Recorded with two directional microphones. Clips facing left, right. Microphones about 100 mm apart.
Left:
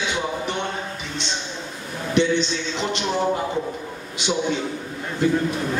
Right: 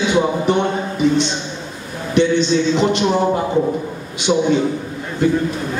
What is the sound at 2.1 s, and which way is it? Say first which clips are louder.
A man's voice: right 6 dB; 50° right (ahead or behind).